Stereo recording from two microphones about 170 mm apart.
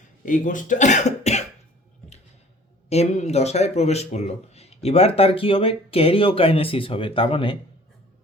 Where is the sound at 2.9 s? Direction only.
40° left (ahead or behind).